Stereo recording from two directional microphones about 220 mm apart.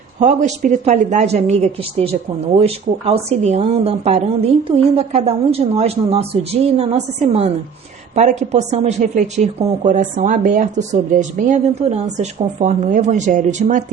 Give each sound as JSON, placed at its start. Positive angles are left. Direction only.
{"t": 0.2, "sound": "speech", "side_deg": -35}